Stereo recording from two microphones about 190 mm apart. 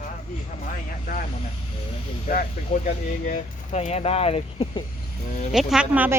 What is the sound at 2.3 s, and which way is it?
Speech, 45° left (ahead or behind).